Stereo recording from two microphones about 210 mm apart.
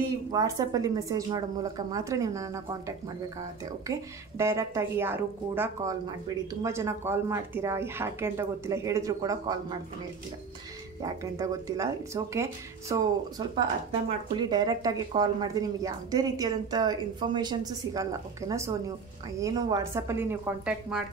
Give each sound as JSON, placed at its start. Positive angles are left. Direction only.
{"t": 0.3, "sound": "a woman's voice", "side_deg": -15}
{"t": 3.8, "sound": "a woman's voice", "side_deg": -15}
{"t": 11.0, "sound": "a woman's voice", "side_deg": -15}